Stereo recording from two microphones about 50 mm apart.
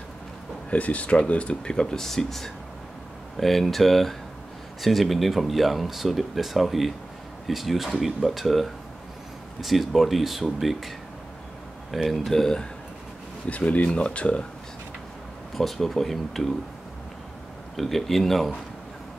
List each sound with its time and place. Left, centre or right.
0.7 s speech: left; by 10.9 s centre
11.9 s speech: centre
13.5 s speech: left
15.5 s speech: centre
17.7 s speech: centre